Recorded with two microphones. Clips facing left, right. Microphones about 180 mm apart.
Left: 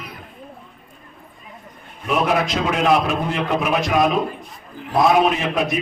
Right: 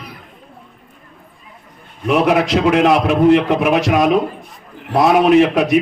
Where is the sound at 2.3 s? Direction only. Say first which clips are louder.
Right 7 dB; 70° right (ahead or behind).